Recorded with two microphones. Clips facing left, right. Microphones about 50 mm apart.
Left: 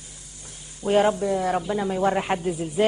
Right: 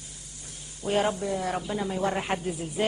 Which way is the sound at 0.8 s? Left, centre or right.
Centre.